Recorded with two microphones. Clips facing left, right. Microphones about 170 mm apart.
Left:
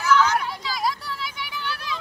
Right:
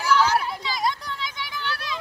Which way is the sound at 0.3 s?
5° right (ahead or behind).